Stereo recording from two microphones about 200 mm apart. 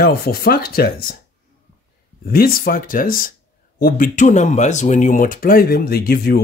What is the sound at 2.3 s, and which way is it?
Speech, 45° left (ahead or behind).